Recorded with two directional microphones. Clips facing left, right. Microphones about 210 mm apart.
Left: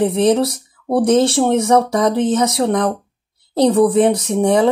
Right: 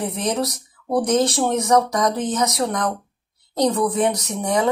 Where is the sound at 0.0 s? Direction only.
30° left (ahead or behind).